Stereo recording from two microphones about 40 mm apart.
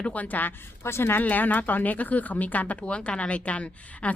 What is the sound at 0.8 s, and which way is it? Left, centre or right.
Speech, left.